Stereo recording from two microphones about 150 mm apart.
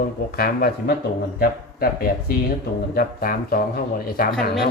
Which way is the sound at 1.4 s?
75° left (ahead or behind).